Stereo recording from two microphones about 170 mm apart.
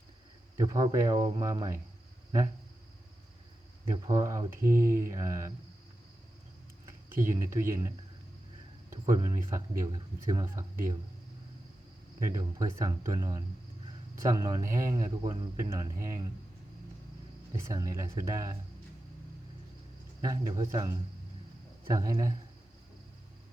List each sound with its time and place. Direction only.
0.5 s speech: 20° right (ahead or behind)
3.9 s speech: 25° right (ahead or behind)
7.2 s speech: 15° right (ahead or behind)
9.1 s speech: 25° right (ahead or behind)
12.3 s speech: 20° right (ahead or behind)
17.5 s speech: 20° right (ahead or behind)
20.2 s speech: 20° right (ahead or behind)
21.9 s speech: 20° right (ahead or behind)